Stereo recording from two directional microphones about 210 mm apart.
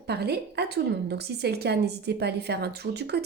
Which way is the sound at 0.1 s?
50° right (ahead or behind).